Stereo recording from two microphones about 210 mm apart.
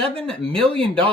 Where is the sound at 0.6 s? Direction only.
25° right (ahead or behind).